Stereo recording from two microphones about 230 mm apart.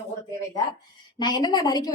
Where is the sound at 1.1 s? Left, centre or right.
Centre.